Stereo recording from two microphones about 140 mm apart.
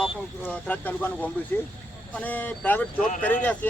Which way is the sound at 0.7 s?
10° left (ahead or behind).